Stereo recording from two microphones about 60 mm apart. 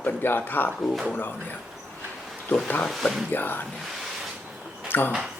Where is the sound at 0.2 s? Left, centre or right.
Left.